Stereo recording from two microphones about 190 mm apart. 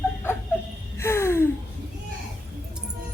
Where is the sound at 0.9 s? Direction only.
15° left (ahead or behind).